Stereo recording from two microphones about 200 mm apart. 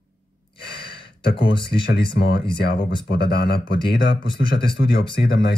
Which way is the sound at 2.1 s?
55° left (ahead or behind).